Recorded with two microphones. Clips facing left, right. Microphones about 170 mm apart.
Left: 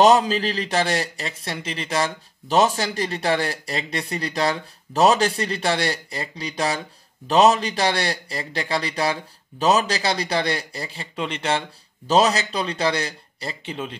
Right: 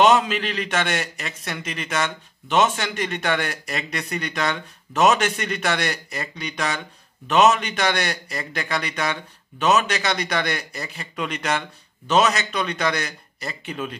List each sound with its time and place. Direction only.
0.0 s a man's voice: 35° left (ahead or behind)